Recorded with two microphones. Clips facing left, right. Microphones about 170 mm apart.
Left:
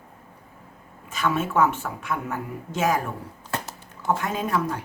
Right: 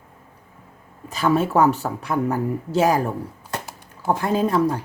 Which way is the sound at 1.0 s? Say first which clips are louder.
Right 6 dB; 35° right (ahead or behind).